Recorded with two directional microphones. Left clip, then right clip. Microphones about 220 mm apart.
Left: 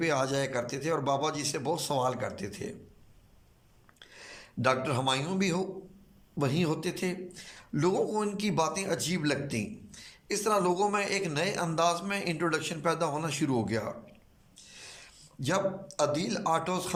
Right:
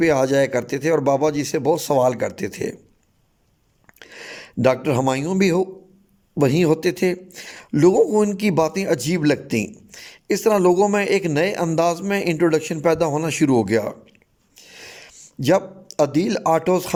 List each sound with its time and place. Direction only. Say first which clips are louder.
0.0 s a man's voice: right 12 dB; 35° right (ahead or behind)
4.0 s a man's voice: right 12 dB; 35° right (ahead or behind)
14.5 s a sound: right 9 dB; 35° right (ahead or behind)